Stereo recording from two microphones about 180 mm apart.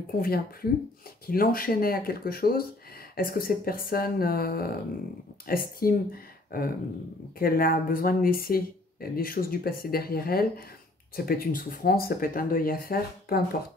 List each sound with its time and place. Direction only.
0.2 s speech: 55° left (ahead or behind)